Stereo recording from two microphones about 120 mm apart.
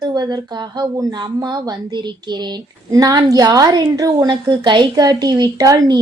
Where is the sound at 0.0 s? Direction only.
35° right (ahead or behind).